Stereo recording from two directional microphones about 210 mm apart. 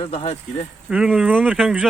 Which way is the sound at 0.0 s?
25° left (ahead or behind).